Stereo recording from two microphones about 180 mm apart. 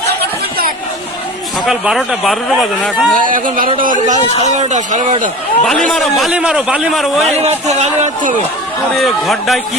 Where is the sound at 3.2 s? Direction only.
50° right (ahead or behind).